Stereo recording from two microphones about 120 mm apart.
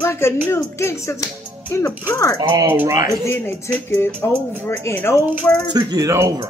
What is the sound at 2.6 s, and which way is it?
Speech, 15° right (ahead or behind).